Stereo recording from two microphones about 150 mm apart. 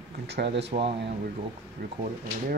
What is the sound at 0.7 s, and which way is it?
Speech, 60° right (ahead or behind).